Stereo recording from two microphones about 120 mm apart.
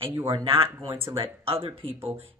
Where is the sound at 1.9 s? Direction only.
20° right (ahead or behind).